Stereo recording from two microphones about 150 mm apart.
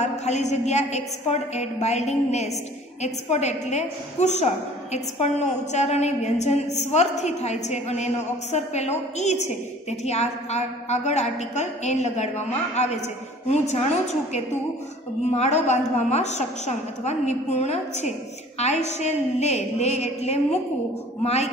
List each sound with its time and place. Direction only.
0.0 s a woman's voice: 50° left (ahead or behind)
15.3 s a woman's voice: 50° left (ahead or behind)